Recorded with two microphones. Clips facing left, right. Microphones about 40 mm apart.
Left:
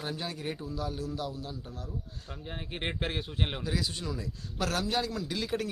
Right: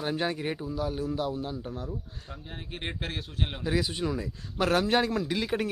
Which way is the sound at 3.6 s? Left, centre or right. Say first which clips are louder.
Right 5 dB; right.